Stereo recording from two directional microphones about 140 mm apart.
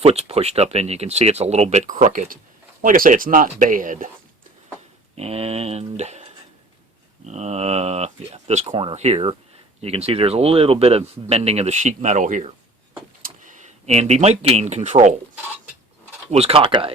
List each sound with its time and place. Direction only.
0.0 s speech: 45° right (ahead or behind); by 4.1 s 70° right (ahead or behind)
5.1 s speech: 45° right (ahead or behind)
7.3 s speech: 50° right (ahead or behind)
16.3 s speech: 45° right (ahead or behind)